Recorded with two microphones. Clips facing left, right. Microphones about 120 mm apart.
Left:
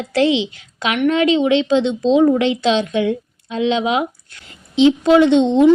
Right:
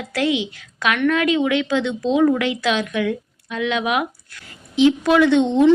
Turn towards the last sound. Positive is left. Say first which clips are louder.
# left 3 dB
turn(degrees=20)  # may be behind; listen again after turning